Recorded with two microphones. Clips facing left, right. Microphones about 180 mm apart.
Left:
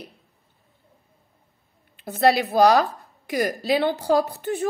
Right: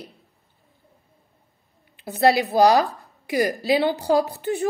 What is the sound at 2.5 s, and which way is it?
Speech, 10° right (ahead or behind).